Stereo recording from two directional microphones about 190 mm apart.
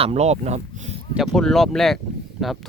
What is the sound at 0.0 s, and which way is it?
Speech, 35° right (ahead or behind).